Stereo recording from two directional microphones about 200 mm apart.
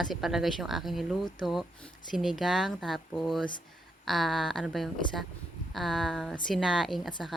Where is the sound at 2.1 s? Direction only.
Centre (ahead or behind).